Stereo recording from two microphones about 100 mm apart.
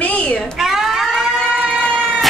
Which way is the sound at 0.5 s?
5° right (ahead or behind).